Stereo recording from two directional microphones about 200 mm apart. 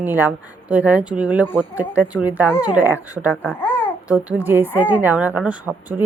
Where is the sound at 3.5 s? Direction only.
10° left (ahead or behind).